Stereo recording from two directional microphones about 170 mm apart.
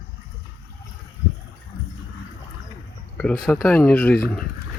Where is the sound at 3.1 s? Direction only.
5° left (ahead or behind).